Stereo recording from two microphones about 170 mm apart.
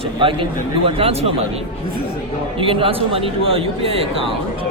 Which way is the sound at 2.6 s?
30° right (ahead or behind).